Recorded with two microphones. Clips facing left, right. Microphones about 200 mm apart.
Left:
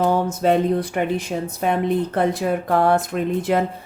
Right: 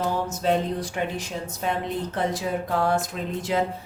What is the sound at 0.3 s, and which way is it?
Speech, 55° left (ahead or behind).